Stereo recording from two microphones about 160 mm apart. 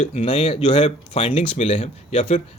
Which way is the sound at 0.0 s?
40° left (ahead or behind).